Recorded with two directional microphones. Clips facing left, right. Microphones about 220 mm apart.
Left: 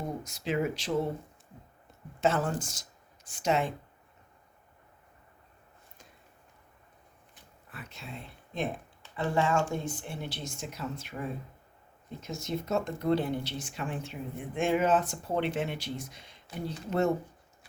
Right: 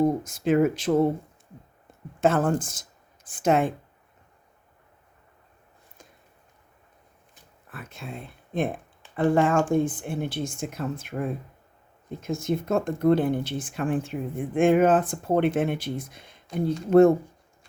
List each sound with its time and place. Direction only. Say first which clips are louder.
0.0 s speech: right 13 dB; 50° right (ahead or behind)
2.2 s speech: right 6 dB; 50° right (ahead or behind)
7.7 s speech: right 6 dB; 50° right (ahead or behind)